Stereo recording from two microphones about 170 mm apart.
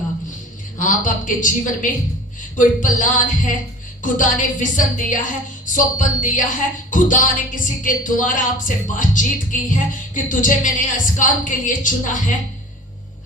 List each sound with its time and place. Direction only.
0.8 s speech: 50° left (ahead or behind)